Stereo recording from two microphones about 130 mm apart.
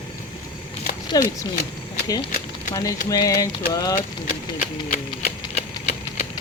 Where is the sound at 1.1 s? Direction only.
30° left (ahead or behind).